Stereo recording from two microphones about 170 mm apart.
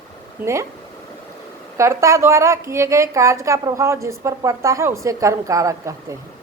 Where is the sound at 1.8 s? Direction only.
15° right (ahead or behind).